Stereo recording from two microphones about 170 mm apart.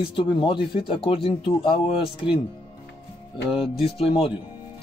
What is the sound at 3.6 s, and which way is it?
Speech, 35° left (ahead or behind).